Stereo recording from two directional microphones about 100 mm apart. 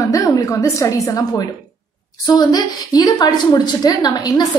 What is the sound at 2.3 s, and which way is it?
A woman's voice, 45° left (ahead or behind).